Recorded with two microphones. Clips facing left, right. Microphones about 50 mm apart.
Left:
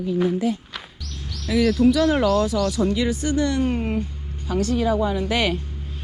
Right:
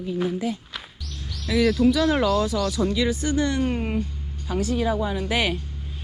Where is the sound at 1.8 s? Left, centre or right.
Left.